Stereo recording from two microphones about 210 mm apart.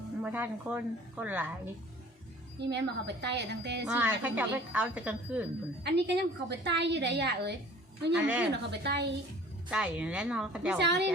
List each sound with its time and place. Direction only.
0.2 s a woman's voice: 10° right (ahead or behind)
2.6 s a woman's voice: 55° right (ahead or behind)
3.8 s a woman's voice: 10° right (ahead or behind)
5.8 s a woman's voice: 55° right (ahead or behind)
8.1 s a woman's voice: 5° right (ahead or behind)
8.8 s a woman's voice: 55° right (ahead or behind)
9.6 s a woman's voice: 5° right (ahead or behind)
10.8 s a woman's voice: 55° right (ahead or behind)